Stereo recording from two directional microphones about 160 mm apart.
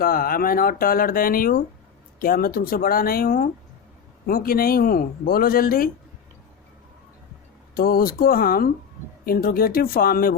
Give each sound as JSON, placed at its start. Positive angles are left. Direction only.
{"t": 0.0, "sound": "speech", "side_deg": 65}
{"t": 7.8, "sound": "speech", "side_deg": 65}